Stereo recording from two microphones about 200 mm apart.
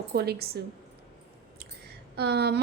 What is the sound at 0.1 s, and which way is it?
Speech, 55° right (ahead or behind).